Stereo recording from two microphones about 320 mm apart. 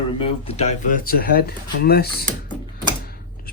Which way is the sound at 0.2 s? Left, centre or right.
Centre.